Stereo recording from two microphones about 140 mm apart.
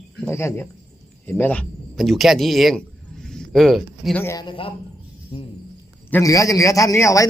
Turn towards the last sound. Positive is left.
turn(degrees=20)  # may be behind; listen again after turning